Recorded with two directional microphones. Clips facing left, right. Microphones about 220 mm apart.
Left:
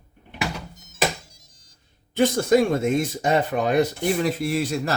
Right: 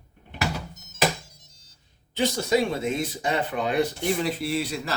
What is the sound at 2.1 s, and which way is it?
Speech, 50° left (ahead or behind).